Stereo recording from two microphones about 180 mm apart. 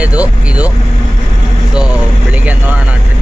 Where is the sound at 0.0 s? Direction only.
5° right (ahead or behind).